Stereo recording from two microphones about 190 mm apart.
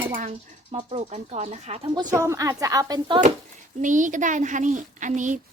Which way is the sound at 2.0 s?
15° right (ahead or behind).